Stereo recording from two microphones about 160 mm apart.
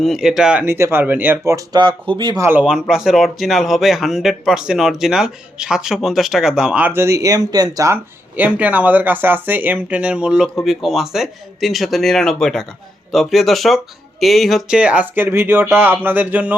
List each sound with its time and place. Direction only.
0.0 s speech: centre (ahead or behind); by 2.4 s 30° right (ahead or behind)
2.4 s speech: 10° right (ahead or behind)
8.4 s speech: 10° right (ahead or behind)